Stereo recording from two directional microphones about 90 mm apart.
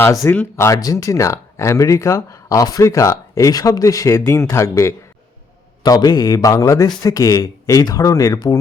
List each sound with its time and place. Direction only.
0.5 s speech: 35° left (ahead or behind)
5.8 s a man's voice: 45° left (ahead or behind)